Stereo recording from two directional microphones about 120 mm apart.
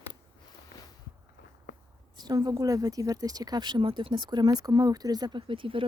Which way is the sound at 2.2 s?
35° right (ahead or behind).